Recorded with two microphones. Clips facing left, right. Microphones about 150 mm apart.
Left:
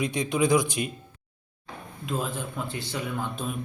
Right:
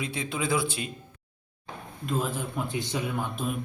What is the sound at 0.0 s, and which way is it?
Speech, 15° left (ahead or behind).